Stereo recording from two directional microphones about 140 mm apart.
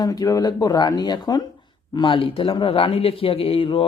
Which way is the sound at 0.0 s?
25° left (ahead or behind).